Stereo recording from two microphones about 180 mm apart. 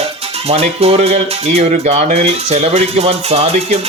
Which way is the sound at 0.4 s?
35° right (ahead or behind).